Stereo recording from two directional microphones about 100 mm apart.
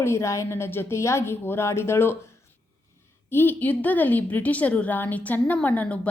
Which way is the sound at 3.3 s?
20° left (ahead or behind).